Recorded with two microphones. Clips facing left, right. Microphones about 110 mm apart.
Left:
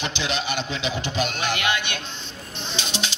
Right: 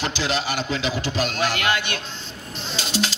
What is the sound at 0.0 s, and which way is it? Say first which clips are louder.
A man's voice: right 3 dB; 20° left (ahead or behind).